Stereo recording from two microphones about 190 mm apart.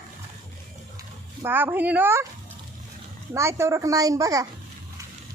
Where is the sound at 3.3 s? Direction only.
15° right (ahead or behind).